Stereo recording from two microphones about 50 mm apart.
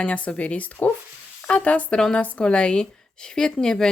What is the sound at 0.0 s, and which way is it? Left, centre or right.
Speech, left.